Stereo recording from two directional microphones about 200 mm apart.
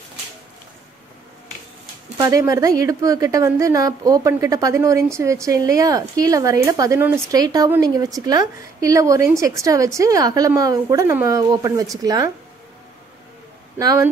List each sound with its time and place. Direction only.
2.1 s a woman's voice: 15° right (ahead or behind)
13.7 s a woman's voice: 15° right (ahead or behind)